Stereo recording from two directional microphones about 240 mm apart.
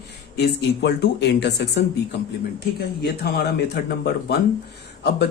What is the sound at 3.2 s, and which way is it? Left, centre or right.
A man's voice, left.